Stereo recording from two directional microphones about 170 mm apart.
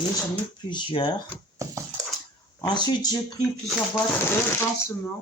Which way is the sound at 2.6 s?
25° left (ahead or behind).